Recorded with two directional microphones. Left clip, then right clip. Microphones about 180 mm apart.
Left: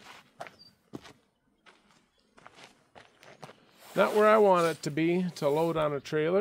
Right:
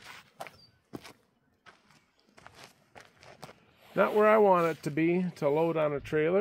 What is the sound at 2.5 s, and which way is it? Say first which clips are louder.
Walk: even; 35° right (ahead or behind).